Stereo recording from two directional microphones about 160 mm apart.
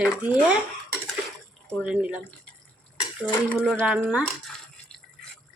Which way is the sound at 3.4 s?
10° right (ahead or behind).